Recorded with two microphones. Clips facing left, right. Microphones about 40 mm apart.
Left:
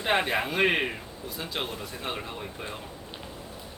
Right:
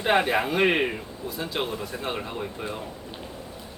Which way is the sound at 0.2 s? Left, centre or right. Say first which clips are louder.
Right 3 dB; centre.